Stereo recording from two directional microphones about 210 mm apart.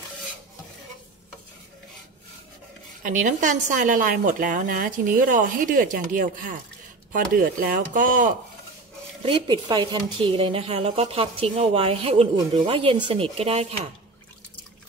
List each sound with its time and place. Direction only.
3.0 s a woman's voice: 40° right (ahead or behind)
9.2 s speech: 20° right (ahead or behind)